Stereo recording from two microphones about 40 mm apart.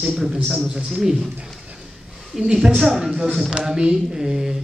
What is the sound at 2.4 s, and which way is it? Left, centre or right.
Speech, centre.